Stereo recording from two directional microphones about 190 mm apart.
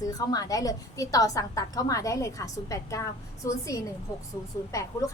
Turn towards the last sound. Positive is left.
turn(degrees=15)  # may be behind; listen again after turning